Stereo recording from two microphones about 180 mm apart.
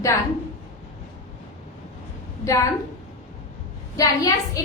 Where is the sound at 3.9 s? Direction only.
20° left (ahead or behind).